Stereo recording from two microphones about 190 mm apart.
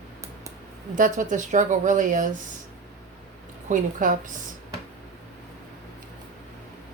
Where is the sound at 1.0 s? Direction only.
40° right (ahead or behind).